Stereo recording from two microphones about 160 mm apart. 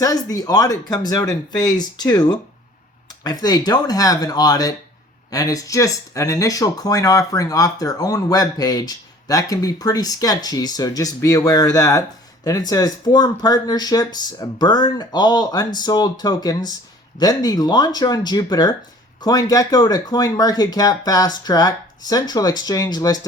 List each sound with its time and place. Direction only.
0.0 s speech: 20° left (ahead or behind)